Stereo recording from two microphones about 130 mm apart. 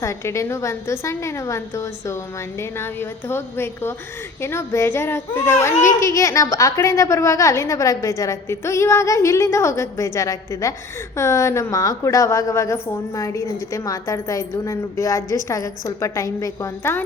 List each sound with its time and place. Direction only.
0.0 s a woman's voice: 25° left (ahead or behind)